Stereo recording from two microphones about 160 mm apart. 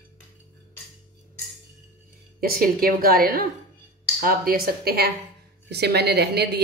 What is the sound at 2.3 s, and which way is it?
A woman's voice, 65° right (ahead or behind).